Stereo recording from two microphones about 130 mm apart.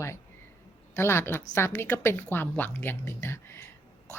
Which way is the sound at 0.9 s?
20° left (ahead or behind).